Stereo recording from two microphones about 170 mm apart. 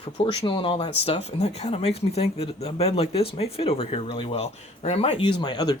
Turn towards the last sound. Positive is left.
turn(degrees=25)  # may be behind; listen again after turning